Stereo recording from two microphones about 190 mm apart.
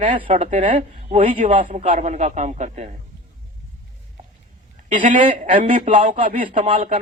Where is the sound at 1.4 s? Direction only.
45° right (ahead or behind).